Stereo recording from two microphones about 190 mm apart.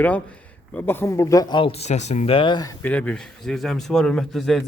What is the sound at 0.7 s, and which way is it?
Speech, 10° left (ahead or behind).